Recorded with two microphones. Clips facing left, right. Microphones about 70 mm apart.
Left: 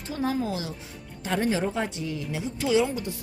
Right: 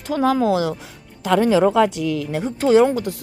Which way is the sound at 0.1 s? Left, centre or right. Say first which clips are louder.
Right 10 dB; right.